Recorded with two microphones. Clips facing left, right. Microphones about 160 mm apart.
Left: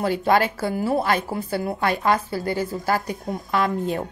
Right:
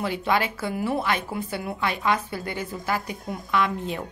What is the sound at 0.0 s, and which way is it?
A woman's voice, 40° left (ahead or behind).